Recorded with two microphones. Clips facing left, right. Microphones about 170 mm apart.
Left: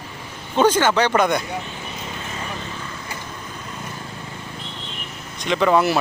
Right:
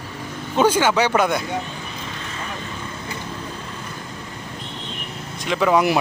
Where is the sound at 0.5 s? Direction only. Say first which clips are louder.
Even; 10° right (ahead or behind).